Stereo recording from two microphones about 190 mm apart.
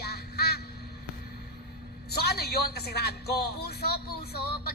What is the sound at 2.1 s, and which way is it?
A woman's voice, 55° left (ahead or behind).